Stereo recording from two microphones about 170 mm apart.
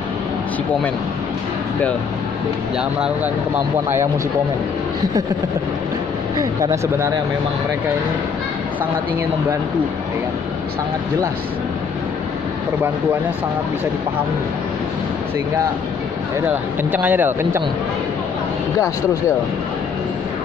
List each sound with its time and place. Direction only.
6.6 s speech: 20° right (ahead or behind)
16.9 s speech: 10° right (ahead or behind)